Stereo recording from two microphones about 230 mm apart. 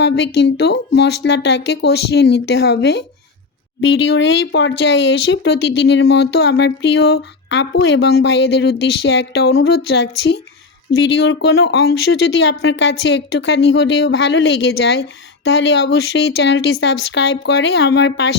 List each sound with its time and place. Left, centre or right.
0.3 s speech: left